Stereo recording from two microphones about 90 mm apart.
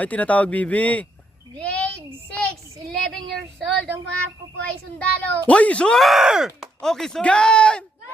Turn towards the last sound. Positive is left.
turn(degrees=10)  # may be behind; listen again after turning